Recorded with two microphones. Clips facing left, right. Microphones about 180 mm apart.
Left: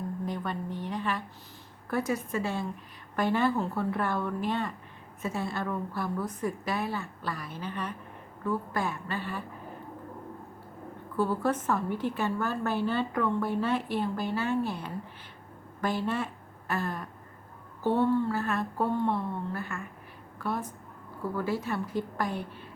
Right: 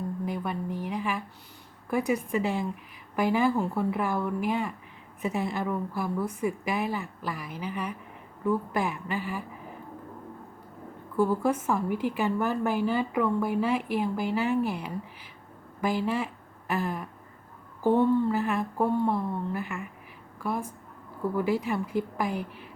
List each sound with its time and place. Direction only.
0.3 s a woman's voice: 10° right (ahead or behind)
11.2 s a woman's voice: 10° right (ahead or behind)